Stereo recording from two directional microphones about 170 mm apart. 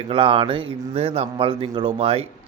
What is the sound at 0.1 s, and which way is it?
A man's voice, 30° right (ahead or behind).